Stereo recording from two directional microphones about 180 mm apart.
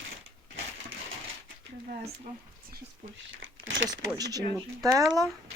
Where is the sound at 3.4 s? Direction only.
90° right.